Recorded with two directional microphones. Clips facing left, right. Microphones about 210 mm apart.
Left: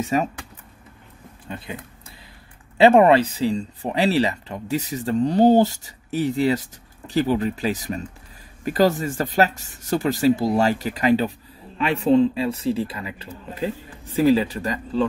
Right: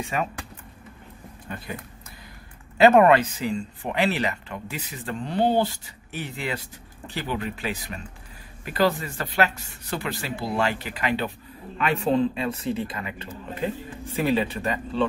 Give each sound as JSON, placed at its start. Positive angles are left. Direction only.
{"t": 0.0, "sound": "speech", "side_deg": 40}
{"t": 2.8, "sound": "speech", "side_deg": 30}